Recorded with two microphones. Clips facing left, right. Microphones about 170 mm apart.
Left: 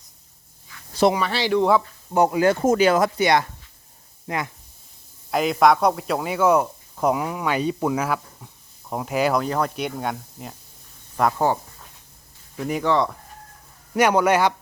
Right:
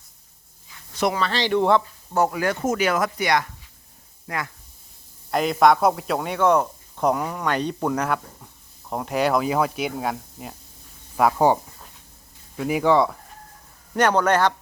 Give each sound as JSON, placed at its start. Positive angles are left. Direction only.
{"t": 1.1, "sound": "a man's voice", "side_deg": 10}
{"t": 2.1, "sound": "speech", "side_deg": 20}
{"t": 5.3, "sound": "speech", "side_deg": 0}
{"t": 12.5, "sound": "speech", "side_deg": -5}
{"t": 13.9, "sound": "a man's voice", "side_deg": 10}